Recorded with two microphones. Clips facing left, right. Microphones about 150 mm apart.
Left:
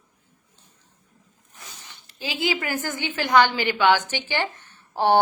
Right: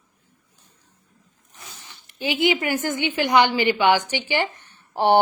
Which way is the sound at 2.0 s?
20° right (ahead or behind).